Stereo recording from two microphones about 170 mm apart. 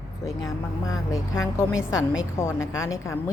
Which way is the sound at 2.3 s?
20° left (ahead or behind).